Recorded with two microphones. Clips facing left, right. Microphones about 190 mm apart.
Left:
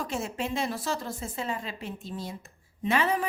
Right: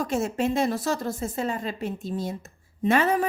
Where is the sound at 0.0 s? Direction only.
45° right (ahead or behind).